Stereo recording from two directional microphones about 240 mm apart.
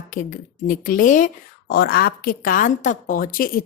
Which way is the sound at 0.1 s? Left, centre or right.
Left.